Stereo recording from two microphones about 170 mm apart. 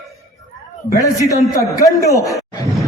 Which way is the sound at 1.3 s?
20° left (ahead or behind).